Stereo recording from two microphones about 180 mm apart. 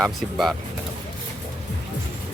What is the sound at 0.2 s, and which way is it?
Speech, centre (ahead or behind).